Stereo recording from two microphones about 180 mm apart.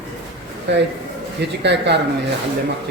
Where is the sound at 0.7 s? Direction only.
75° right (ahead or behind).